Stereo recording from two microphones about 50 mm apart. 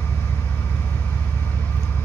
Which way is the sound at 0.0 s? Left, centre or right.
Left.